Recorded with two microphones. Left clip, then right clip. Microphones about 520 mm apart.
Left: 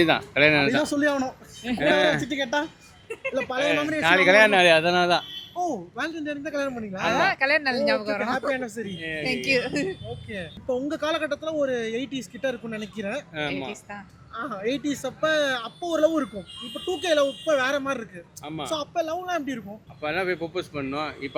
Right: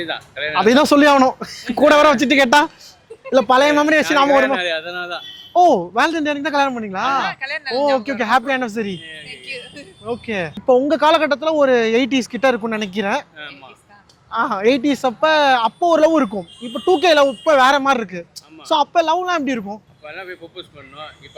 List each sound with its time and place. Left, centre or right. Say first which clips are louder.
0.8 s speech: right 12 dB; right
1.7 s speech: right 10 dB; left
2.2 s speech: right 14 dB; right
4.0 s a man's voice: right 3 dB; left
5.5 s speech: right 16 dB; right
7.1 s speech: left 2 dB; left
8.2 s speech: right 9 dB; right
9.0 s a woman's voice: left 6 dB; left
10.2 s speech: right 14 dB; right
14.3 s speech: right 13 dB; right
20.1 s speech: left 6 dB; left